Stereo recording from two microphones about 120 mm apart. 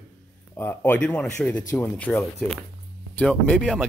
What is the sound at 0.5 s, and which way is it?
Speech, 15° left (ahead or behind).